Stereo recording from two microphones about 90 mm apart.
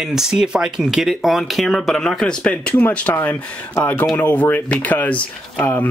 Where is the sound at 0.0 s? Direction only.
5° right (ahead or behind).